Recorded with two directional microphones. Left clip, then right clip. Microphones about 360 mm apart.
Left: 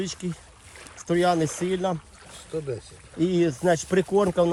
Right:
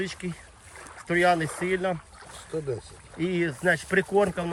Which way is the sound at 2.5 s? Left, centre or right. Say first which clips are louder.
Even; centre.